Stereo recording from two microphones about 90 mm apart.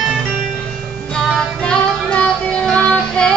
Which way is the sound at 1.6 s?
10° left (ahead or behind).